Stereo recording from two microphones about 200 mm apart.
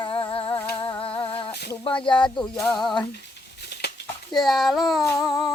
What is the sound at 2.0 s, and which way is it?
Speech, 25° left (ahead or behind).